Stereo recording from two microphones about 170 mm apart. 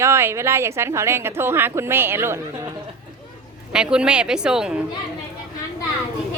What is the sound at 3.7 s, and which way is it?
A woman's voice, 5° right (ahead or behind).